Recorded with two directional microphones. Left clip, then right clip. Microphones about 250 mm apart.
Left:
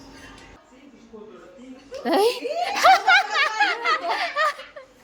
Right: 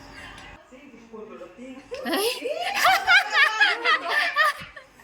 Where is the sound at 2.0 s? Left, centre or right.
Centre.